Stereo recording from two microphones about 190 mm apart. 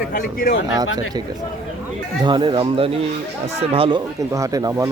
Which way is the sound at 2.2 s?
25° right (ahead or behind).